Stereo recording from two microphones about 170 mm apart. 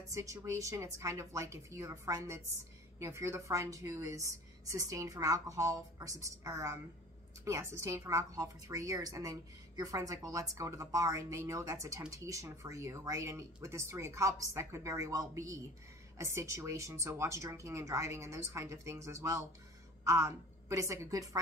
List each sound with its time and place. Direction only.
0.1 s a woman's voice: 20° right (ahead or behind)